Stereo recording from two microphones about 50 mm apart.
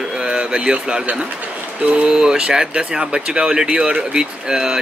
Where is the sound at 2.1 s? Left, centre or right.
Centre.